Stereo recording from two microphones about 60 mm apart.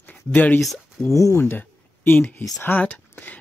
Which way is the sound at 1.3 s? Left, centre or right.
Left.